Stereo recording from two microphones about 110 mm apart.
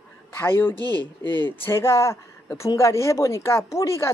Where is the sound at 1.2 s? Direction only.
20° left (ahead or behind).